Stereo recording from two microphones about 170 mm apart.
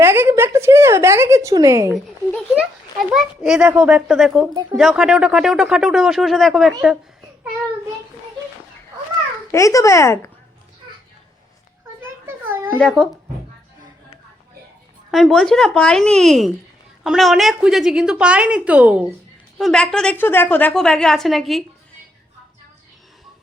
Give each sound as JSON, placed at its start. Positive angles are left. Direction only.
{"t": 0.0, "sound": "speech", "side_deg": -15}
{"t": 2.0, "sound": "a child's voice", "side_deg": -5}
{"t": 4.4, "sound": "speech", "side_deg": -25}
{"t": 4.8, "sound": "a child's voice", "side_deg": 0}
{"t": 9.5, "sound": "speech", "side_deg": 20}
{"t": 12.5, "sound": "cat", "side_deg": -15}
{"t": 15.1, "sound": "a child's voice", "side_deg": 0}
{"t": 19.5, "sound": "a child's voice", "side_deg": 5}